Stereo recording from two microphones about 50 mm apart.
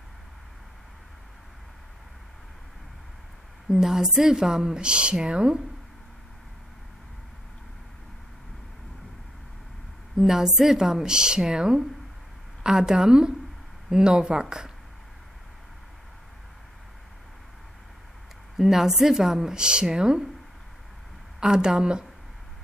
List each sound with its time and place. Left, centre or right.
3.6 s speech: centre
10.1 s speech: centre
18.6 s speech: centre
21.4 s speech: centre